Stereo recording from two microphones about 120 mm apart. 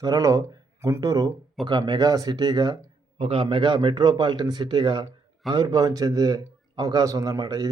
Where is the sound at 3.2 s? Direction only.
45° right (ahead or behind).